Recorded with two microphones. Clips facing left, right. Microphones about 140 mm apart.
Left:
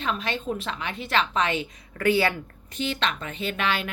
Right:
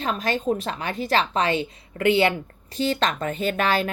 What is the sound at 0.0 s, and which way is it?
A woman's voice, 40° right (ahead or behind).